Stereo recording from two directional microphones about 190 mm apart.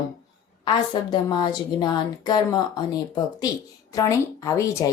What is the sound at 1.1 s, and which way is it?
A woman's voice, 25° left (ahead or behind).